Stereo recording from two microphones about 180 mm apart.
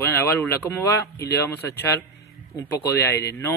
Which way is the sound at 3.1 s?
15° left (ahead or behind).